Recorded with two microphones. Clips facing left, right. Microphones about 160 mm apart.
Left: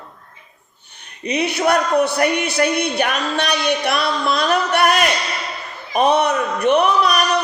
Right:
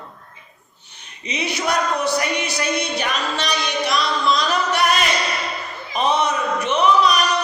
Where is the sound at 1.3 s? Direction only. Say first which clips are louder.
Left 6 dB; 60° left (ahead or behind).